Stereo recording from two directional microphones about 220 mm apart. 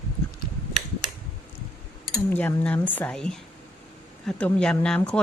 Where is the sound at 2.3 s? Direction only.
5° left (ahead or behind).